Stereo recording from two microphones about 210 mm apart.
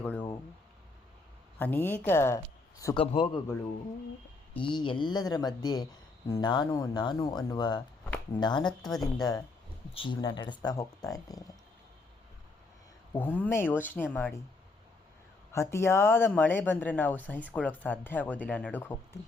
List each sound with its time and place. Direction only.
0.0 s a sound: 5° left (ahead or behind)
1.5 s speech: 10° left (ahead or behind)
2.8 s speech: 25° left (ahead or behind)
4.5 s speech: 25° left (ahead or behind)
8.9 s a woman's voice: centre (ahead or behind)
9.9 s speech: 25° left (ahead or behind)
13.1 s speech: 5° left (ahead or behind)
15.5 s speech: 10° left (ahead or behind)